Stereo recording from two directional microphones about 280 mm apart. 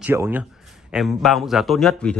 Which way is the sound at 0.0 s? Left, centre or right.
Centre.